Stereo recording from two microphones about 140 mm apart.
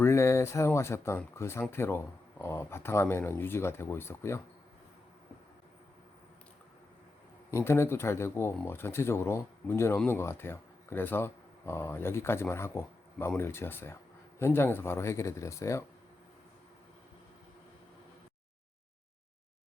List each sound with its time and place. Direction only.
0.0 s speech: 20° left (ahead or behind)
7.5 s speech: 20° left (ahead or behind)